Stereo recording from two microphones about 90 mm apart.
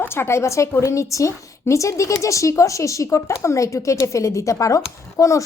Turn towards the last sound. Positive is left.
turn(degrees=35)  # may be behind; listen again after turning